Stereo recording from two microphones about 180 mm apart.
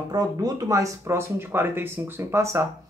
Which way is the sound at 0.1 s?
20° right (ahead or behind).